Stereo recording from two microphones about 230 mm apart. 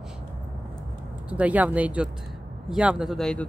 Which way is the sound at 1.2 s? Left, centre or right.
Centre.